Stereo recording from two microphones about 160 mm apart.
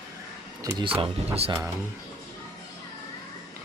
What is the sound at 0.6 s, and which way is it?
Speech, 25° right (ahead or behind).